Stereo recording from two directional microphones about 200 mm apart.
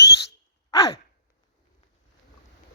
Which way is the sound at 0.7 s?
20° left (ahead or behind).